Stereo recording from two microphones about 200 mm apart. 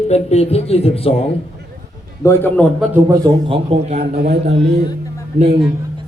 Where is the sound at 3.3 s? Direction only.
30° right (ahead or behind).